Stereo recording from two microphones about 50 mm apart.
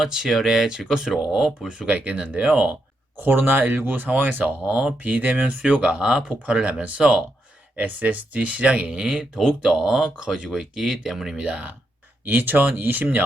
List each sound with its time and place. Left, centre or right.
0.0 s speech: centre
1.9 s speech: right
3.2 s speech: right
4.6 s speech: right
5.0 s speech: right
7.8 s speech: right; by 11.3 s centre
11.3 s speech: right
12.3 s speech: right